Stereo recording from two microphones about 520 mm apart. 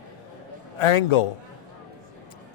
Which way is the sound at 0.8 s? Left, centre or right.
Left.